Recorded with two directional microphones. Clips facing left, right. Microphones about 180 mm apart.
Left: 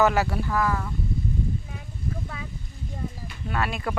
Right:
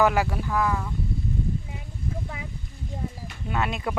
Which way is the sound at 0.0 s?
10° right (ahead or behind).